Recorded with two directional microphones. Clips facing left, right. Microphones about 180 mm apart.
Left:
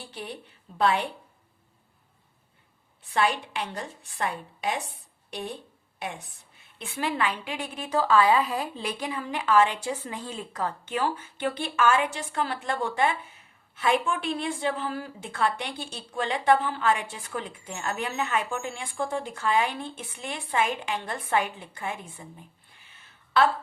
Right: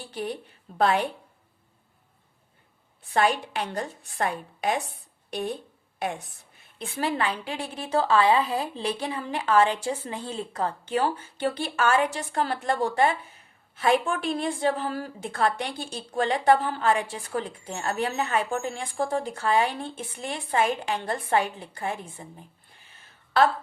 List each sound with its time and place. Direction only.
0.8 s a woman's voice: 45° right (ahead or behind)
3.1 s a woman's voice: 45° right (ahead or behind)
6.8 s a woman's voice: 35° right (ahead or behind)